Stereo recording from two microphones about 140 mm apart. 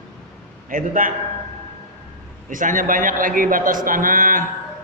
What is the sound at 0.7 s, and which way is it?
Speech, 80° right.